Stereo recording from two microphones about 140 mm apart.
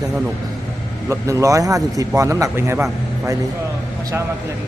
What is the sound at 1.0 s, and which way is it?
A man's voice, 20° right (ahead or behind).